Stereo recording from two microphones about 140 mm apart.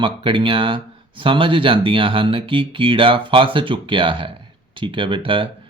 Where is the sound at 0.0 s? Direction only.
35° right (ahead or behind).